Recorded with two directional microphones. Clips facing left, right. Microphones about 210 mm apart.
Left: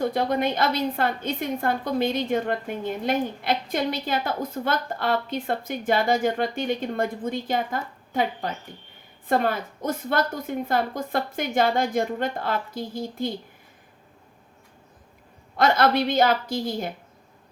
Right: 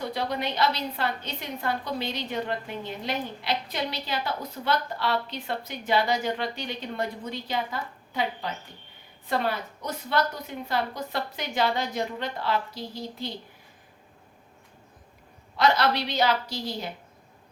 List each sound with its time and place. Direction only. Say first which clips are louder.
0.0 s a woman's voice: left 6 dB; 50° left (ahead or behind)
15.5 s a woman's voice: left 3 dB; 50° left (ahead or behind)